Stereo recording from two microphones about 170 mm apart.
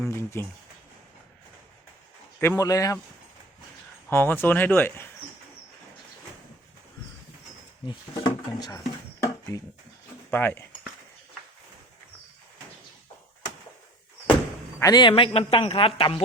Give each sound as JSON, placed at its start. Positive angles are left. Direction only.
{"t": 0.1, "sound": "speech", "side_deg": 15}
{"t": 2.4, "sound": "speech", "side_deg": 20}
{"t": 4.1, "sound": "speech", "side_deg": 10}
{"t": 7.9, "sound": "speech", "side_deg": 30}
{"t": 14.8, "sound": "a man's voice", "side_deg": 25}